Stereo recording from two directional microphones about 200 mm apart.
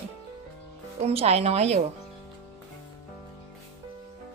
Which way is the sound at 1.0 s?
30° right (ahead or behind).